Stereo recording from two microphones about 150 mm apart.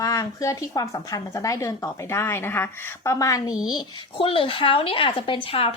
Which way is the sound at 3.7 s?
35° left (ahead or behind).